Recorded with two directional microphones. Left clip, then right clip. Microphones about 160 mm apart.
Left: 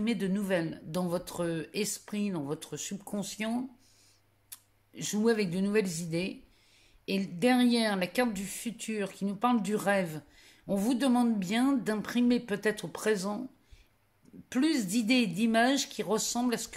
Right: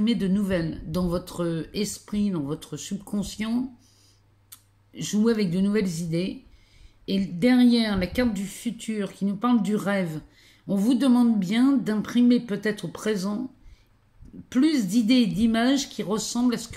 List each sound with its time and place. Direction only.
0.0 s a woman's voice: 30° left (ahead or behind)
14.5 s a woman's voice: 30° left (ahead or behind)